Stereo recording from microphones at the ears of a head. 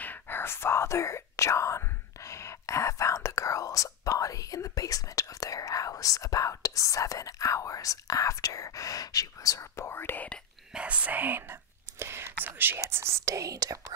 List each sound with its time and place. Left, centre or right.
0.5 s speech: left
10.9 s speech: right